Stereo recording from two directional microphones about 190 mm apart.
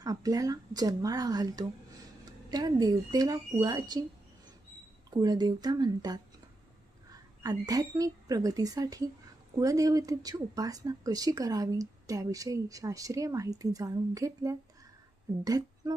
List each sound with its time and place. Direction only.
0.0 s speech: 20° right (ahead or behind)
5.1 s speech: 20° right (ahead or behind)
7.4 s speech: 20° right (ahead or behind)